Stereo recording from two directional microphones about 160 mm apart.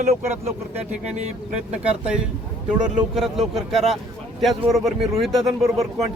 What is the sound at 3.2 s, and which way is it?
Speech, centre (ahead or behind).